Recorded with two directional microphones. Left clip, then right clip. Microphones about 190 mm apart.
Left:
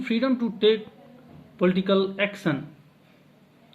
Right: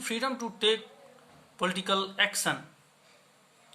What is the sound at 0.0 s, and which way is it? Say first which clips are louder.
Speech: left 6 dB; 35° right (ahead or behind).